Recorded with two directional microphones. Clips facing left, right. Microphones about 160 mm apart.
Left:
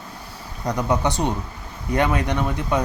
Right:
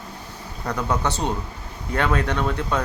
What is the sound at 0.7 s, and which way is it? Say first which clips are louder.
Speech: left 2 dB; 15° left (ahead or behind).